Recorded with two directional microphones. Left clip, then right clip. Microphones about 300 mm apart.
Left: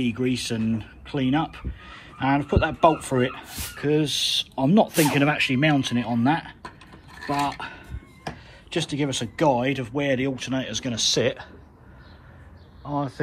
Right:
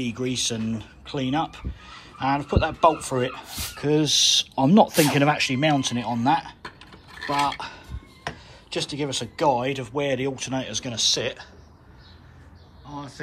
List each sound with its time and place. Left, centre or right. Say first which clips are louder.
0.0 s speech: left 1 dB; centre
12.8 s speech: left 9 dB; centre